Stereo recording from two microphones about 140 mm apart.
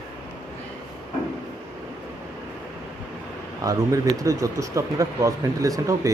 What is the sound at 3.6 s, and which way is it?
Speech, 25° right (ahead or behind).